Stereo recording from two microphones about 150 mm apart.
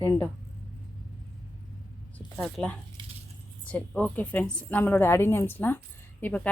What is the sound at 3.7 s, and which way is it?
A woman's voice, 10° left (ahead or behind).